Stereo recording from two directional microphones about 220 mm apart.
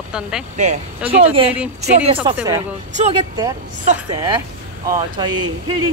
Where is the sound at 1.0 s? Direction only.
25° right (ahead or behind).